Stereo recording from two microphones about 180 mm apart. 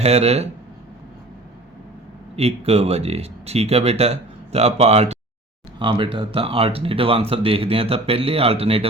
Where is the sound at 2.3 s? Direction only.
35° right (ahead or behind).